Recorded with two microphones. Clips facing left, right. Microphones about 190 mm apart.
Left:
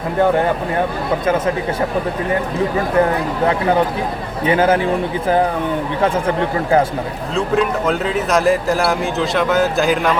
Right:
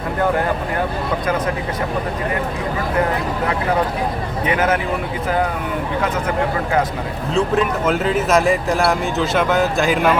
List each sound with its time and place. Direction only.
4.4 s a man's voice: 30° left (ahead or behind)
6.0 s speech: 30° left (ahead or behind)
7.3 s speech: centre (ahead or behind)